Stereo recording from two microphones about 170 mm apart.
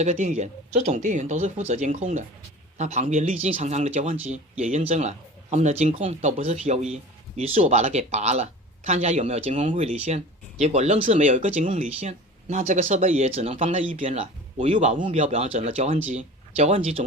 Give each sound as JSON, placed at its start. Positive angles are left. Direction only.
{"t": 0.0, "sound": "a man's voice", "side_deg": -40}